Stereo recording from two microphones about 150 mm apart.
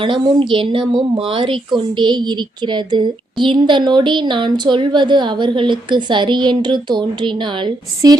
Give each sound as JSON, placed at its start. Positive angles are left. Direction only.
{"t": 0.0, "sound": "speech", "side_deg": -35}
{"t": 8.0, "sound": "a woman's voice", "side_deg": -25}